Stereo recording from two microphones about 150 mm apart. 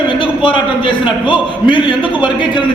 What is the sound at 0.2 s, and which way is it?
A man's voice, 35° left (ahead or behind).